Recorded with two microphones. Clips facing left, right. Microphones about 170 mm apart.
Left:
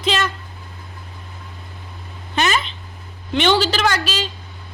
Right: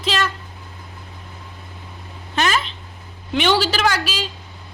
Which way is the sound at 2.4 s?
Centre (ahead or behind).